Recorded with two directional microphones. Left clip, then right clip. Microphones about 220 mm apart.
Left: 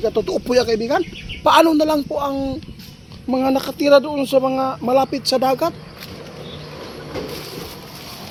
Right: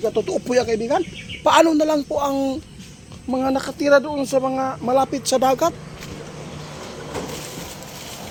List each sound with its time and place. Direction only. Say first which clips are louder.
0.0 s speech: left 2 dB; 20° left (ahead or behind); by 2.6 s 5° right (ahead or behind)
3.2 s speech: left 3 dB; 15° left (ahead or behind); by 5.7 s centre (ahead or behind)